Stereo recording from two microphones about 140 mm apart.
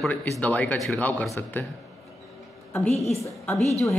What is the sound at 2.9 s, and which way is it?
Speech, 50° left (ahead or behind).